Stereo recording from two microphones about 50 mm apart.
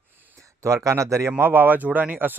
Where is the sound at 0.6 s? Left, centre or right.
Right.